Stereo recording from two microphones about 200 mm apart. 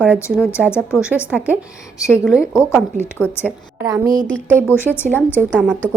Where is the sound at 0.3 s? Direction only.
5° right (ahead or behind).